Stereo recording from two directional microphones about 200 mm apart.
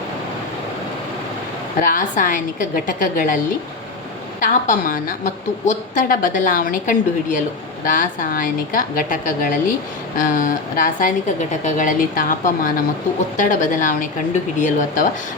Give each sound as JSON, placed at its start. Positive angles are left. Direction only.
{"t": 1.8, "sound": "a woman's voice", "side_deg": 40}